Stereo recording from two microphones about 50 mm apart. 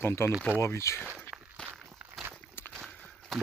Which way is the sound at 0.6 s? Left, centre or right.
Left.